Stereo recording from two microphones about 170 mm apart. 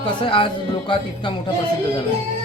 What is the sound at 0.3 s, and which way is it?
Speech, 30° left (ahead or behind).